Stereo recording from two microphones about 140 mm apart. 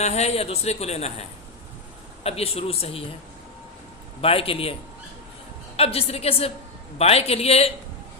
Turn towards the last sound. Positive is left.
turn(degrees=45)  # may be behind; listen again after turning